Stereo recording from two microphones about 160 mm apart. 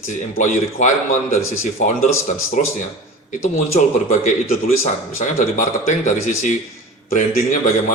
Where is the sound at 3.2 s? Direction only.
45° left (ahead or behind).